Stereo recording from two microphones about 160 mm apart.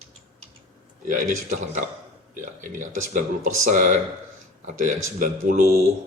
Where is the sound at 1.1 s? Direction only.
50° right (ahead or behind).